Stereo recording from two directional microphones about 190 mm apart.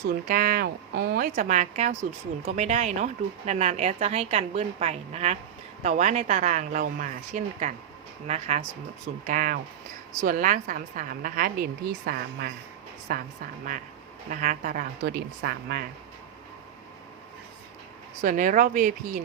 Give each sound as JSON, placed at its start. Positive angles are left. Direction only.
{"t": 0.3, "sound": "a woman's voice", "side_deg": -50}
{"t": 14.3, "sound": "a woman's voice", "side_deg": -45}
{"t": 18.2, "sound": "a woman's voice", "side_deg": -45}